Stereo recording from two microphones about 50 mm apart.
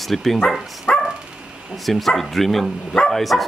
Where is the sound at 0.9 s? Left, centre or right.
Centre.